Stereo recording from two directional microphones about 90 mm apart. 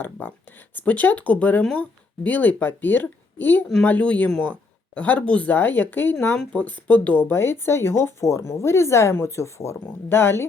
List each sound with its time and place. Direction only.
0.2 s speech: 25° left (ahead or behind)
6.3 s speech: 10° left (ahead or behind)